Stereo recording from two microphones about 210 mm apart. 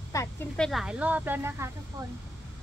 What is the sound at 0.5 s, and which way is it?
Speech, centre (ahead or behind).